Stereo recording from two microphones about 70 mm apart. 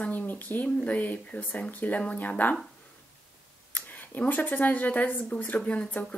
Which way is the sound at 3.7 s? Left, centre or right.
Left.